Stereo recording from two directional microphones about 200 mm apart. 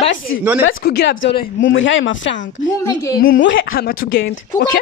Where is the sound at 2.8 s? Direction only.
15° left (ahead or behind).